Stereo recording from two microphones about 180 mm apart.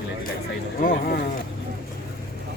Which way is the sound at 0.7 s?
50° left (ahead or behind).